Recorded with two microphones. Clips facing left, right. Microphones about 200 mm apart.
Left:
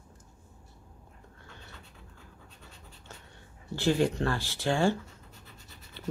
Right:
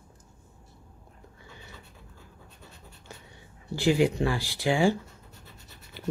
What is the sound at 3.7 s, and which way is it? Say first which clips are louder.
Speech: right 3 dB; 10° right (ahead or behind).